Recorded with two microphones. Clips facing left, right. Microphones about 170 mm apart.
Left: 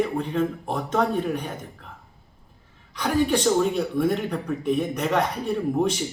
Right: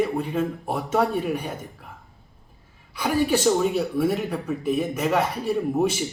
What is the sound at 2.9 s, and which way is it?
Speech, 10° right (ahead or behind).